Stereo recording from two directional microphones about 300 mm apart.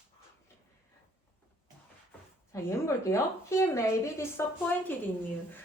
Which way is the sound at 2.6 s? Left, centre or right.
Centre.